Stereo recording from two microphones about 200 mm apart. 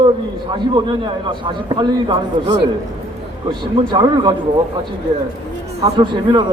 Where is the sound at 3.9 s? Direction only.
20° right (ahead or behind).